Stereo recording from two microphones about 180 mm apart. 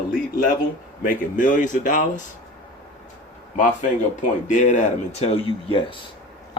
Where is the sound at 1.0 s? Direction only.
45° left (ahead or behind).